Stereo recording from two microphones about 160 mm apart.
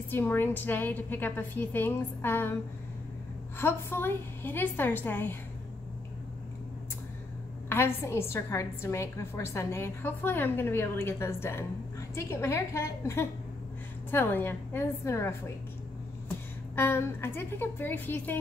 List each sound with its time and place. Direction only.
0.1 s a woman's voice: 15° left (ahead or behind)
3.5 s a woman's voice: 15° left (ahead or behind)
7.7 s a woman's voice: 15° left (ahead or behind)